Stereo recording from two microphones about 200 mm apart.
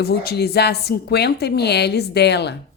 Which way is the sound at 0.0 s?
50° left (ahead or behind).